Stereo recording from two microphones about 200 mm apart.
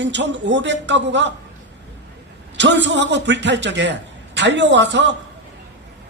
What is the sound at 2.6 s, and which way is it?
Speech, 60° right (ahead or behind).